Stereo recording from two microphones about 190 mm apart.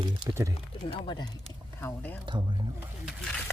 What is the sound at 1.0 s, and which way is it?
Speech, 25° left (ahead or behind).